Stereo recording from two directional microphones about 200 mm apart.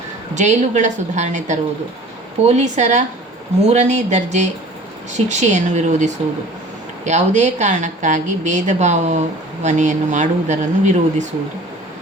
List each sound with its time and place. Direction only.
0.3 s a woman's voice: 35° right (ahead or behind)